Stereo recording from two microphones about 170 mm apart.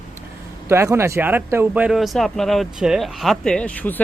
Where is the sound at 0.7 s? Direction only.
15° right (ahead or behind).